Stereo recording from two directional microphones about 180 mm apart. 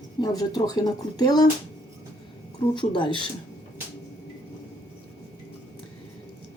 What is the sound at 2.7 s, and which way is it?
Speech, 25° left (ahead or behind).